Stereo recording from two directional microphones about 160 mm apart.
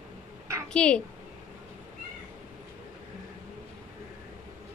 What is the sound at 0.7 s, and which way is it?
Speech, 5° left (ahead or behind).